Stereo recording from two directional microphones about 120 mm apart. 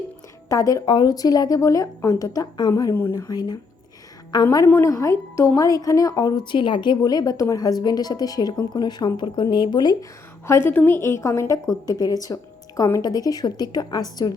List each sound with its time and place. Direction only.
0.4 s a woman's voice: 30° left (ahead or behind)
2.9 s speech: 20° left (ahead or behind)
3.2 s a woman's voice: 35° left (ahead or behind)
4.4 s a woman's voice: 20° left (ahead or behind)